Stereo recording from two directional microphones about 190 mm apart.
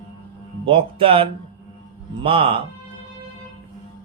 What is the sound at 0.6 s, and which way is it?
A man's voice, 30° right (ahead or behind).